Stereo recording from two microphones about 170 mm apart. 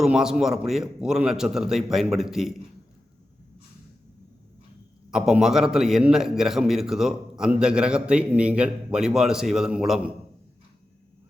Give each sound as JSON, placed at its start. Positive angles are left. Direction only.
{"t": 0.0, "sound": "a man's voice", "side_deg": -5}
{"t": 5.1, "sound": "a man's voice", "side_deg": -5}